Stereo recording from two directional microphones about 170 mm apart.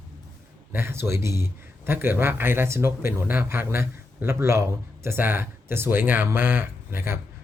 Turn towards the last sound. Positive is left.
turn(degrees=-15)  # may be behind; listen again after turning